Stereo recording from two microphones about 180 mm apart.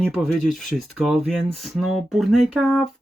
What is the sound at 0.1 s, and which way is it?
Speech, centre (ahead or behind).